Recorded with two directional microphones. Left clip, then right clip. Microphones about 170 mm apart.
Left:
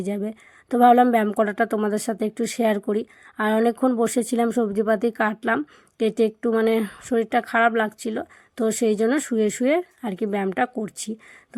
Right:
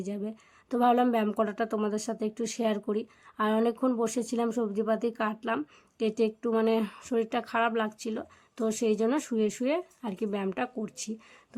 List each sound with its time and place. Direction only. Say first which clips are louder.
0.0 s a woman's voice: left 8 dB; 30° left (ahead or behind)